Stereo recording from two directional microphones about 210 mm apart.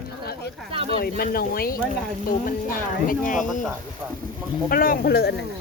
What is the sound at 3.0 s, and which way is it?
Speech, 40° left (ahead or behind).